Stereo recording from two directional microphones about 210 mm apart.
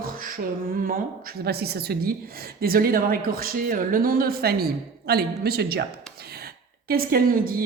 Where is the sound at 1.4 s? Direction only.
50° right (ahead or behind).